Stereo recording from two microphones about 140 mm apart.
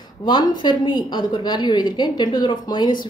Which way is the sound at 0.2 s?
30° left (ahead or behind).